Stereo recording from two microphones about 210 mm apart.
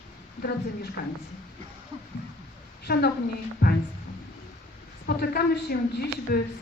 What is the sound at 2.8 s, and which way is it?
Speech, 50° left (ahead or behind).